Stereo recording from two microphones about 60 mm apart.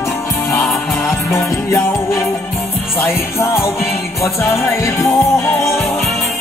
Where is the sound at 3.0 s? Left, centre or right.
Left.